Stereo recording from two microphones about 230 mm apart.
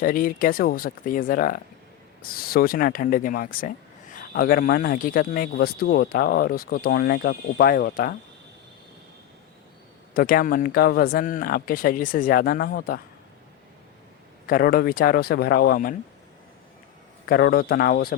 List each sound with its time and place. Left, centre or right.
0.0 s a man's voice: left
10.2 s a man's voice: left
14.4 s a man's voice: left
17.2 s a man's voice: left